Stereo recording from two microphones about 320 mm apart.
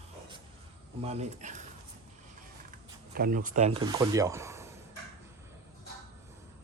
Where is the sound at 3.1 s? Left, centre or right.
Right; by 4.6 s centre.